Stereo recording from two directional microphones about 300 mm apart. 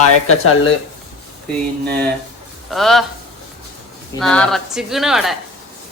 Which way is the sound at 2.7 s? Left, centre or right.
Centre.